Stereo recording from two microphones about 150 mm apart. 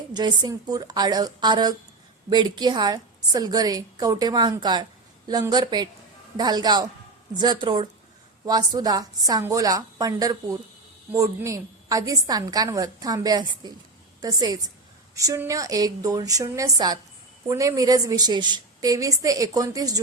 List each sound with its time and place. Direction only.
0.1 s a woman's voice: 30° right (ahead or behind)